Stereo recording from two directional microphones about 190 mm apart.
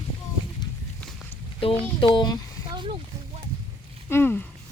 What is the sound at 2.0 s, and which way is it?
Speech, 25° left (ahead or behind).